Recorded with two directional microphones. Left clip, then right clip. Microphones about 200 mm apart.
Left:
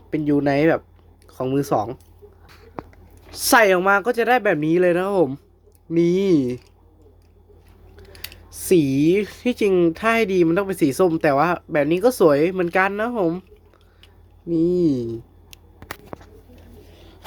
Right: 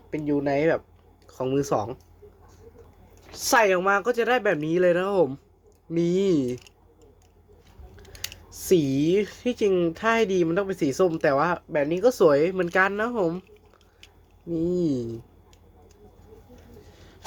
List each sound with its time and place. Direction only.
0.3 s speech: 30° left (ahead or behind)
1.3 s speech: 15° left (ahead or behind)
3.3 s speech: 35° left (ahead or behind); by 6.6 s 15° left (ahead or behind)
8.1 s typing: centre (ahead or behind)
8.5 s speech: 15° left (ahead or behind)
14.5 s speech: 20° left (ahead or behind)